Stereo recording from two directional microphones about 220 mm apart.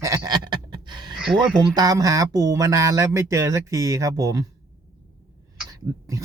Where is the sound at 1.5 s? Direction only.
15° right (ahead or behind).